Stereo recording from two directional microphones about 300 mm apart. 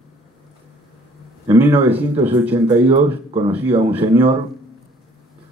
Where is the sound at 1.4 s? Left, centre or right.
Centre.